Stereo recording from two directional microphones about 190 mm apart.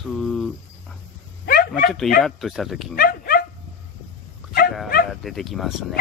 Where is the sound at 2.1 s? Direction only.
Centre (ahead or behind).